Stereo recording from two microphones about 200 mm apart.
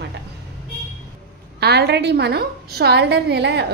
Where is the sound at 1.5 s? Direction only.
55° right (ahead or behind).